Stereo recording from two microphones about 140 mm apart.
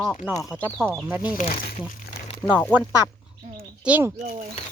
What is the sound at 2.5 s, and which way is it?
Speech, 10° left (ahead or behind).